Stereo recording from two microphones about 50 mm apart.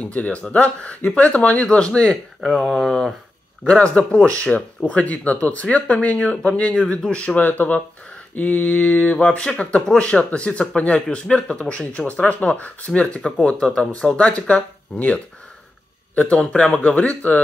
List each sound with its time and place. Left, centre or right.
0.0 s speech: left
2.6 s speech: centre
3.8 s speech: left
7.3 s mantra: left
9.2 s speech: left
12.1 s mantra: left
12.4 s speech: left
13.0 s speech: centre
16.3 s speech: centre